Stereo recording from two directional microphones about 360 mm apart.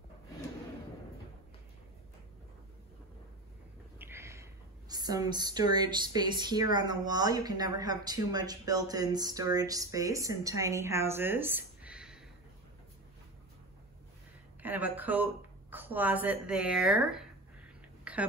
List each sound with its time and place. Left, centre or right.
4.0 s speech: centre
14.6 s speech: centre
18.1 s a sound: centre